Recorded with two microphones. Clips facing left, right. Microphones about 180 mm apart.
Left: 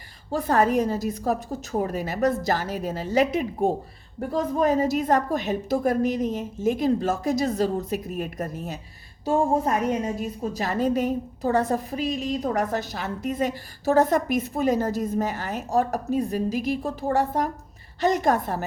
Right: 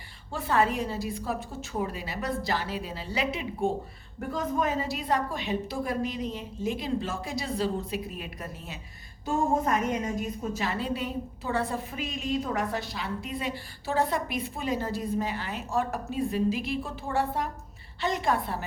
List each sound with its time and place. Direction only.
0.3 s a woman's voice: 40° left (ahead or behind)
4.2 s a woman's voice: 35° left (ahead or behind)